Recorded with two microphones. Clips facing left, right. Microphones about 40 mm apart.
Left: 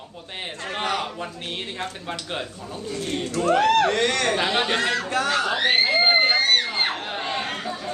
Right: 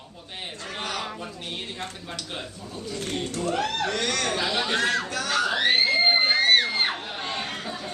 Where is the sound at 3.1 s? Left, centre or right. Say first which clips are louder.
Left 5 dB; left.